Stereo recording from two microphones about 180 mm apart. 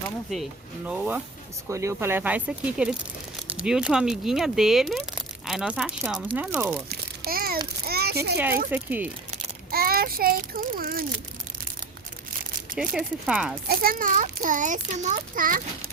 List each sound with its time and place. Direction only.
0.9 s speech: 10° right (ahead or behind)
6.8 s babbling: 60° right (ahead or behind)
7.9 s a sound: 60° right (ahead or behind)
8.7 s speech: 10° right (ahead or behind)
9.7 s a child's voice: 55° right (ahead or behind)
12.8 s speech: 5° right (ahead or behind)
13.7 s a child's voice: 55° right (ahead or behind)